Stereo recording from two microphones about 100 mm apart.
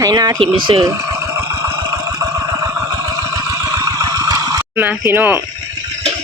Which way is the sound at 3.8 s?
35° right (ahead or behind).